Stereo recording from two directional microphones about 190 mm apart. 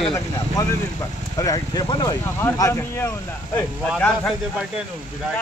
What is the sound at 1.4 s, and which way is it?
A man's voice, 20° left (ahead or behind).